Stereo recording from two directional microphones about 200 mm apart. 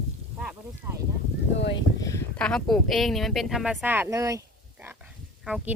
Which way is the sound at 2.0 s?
15° left (ahead or behind).